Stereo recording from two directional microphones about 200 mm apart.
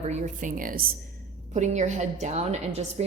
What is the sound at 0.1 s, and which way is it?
A woman's voice, 40° right (ahead or behind).